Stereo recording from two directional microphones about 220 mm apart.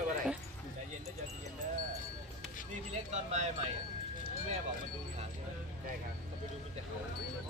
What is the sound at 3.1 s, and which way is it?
Speech, 30° right (ahead or behind).